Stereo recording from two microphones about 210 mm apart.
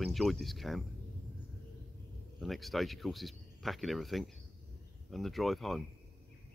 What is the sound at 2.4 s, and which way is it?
Speech, centre (ahead or behind).